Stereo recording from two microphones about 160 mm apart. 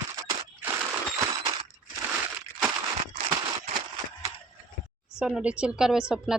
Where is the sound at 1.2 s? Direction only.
25° right (ahead or behind).